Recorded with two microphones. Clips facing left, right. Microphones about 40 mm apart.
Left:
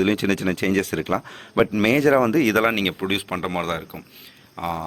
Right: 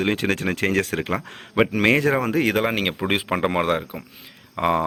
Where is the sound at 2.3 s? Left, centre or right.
Right.